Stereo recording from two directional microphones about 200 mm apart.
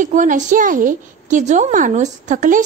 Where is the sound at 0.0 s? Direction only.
40° right (ahead or behind).